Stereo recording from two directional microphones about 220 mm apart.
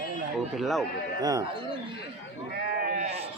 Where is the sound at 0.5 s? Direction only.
Centre (ahead or behind).